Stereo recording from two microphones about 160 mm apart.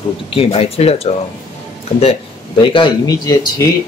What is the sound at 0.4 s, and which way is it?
Speech, 40° left (ahead or behind).